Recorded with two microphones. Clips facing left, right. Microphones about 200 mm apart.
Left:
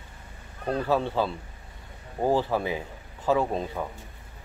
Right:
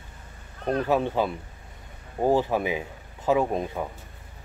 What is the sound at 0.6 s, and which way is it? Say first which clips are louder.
Speech: right 2 dB; 15° right (ahead or behind).